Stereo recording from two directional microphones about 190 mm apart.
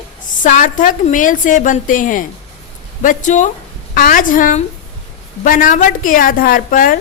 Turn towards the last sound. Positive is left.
turn(degrees=45)  # may be behind; listen again after turning